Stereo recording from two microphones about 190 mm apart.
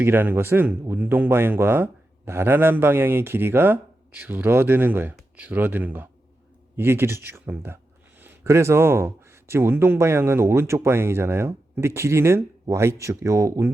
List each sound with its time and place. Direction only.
0.0 s speech: 10° right (ahead or behind)